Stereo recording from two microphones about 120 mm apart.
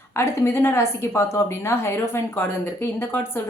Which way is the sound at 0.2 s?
20° left (ahead or behind).